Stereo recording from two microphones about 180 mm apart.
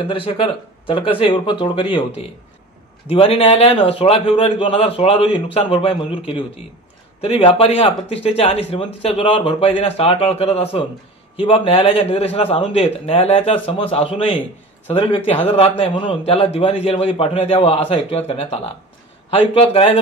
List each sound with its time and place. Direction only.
0.0 s speech: 30° left (ahead or behind)